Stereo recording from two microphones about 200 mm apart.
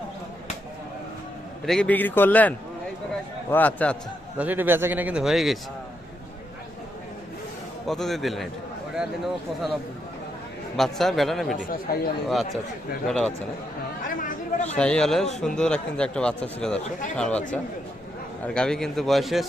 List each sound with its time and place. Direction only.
1.6 s a man's voice: 5° left (ahead or behind)
4.4 s a man's voice: 10° right (ahead or behind)
7.9 s a man's voice: centre (ahead or behind)
10.8 s a man's voice: centre (ahead or behind)
11.9 s speech: 45° left (ahead or behind)
13.1 s a man's voice: 5° left (ahead or behind)
14.2 s speech: 40° left (ahead or behind)
14.8 s a man's voice: 5° left (ahead or behind)
16.8 s speech: 40° left (ahead or behind)
17.2 s a man's voice: 5° left (ahead or behind)
18.4 s a man's voice: 5° left (ahead or behind)